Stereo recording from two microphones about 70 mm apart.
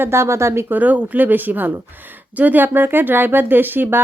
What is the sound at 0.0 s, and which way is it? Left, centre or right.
Speech, right.